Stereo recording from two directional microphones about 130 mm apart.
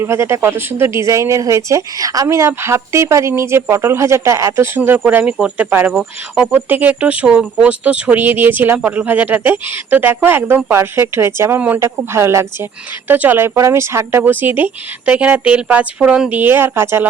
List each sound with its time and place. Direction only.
0.0 s speech: 20° right (ahead or behind)